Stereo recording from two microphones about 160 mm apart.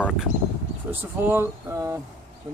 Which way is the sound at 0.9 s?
15° right (ahead or behind).